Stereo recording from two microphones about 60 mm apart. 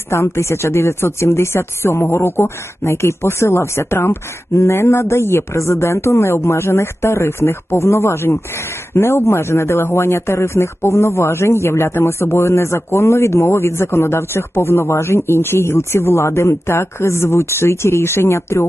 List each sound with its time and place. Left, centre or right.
0.1 s speech: left